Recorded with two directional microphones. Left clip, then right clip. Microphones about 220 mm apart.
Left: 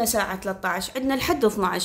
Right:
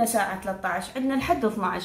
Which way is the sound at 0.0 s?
50° left (ahead or behind).